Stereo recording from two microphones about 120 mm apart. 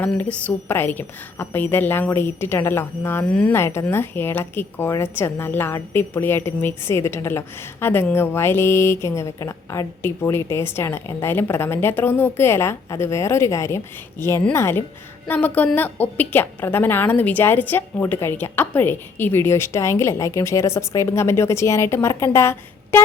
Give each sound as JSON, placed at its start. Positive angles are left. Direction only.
{"t": 0.0, "sound": "a woman's voice", "side_deg": 15}